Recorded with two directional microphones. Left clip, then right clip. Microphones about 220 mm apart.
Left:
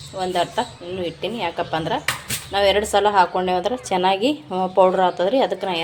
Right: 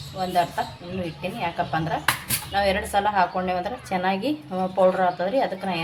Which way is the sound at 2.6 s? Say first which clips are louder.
Left 5 dB; 40° left (ahead or behind).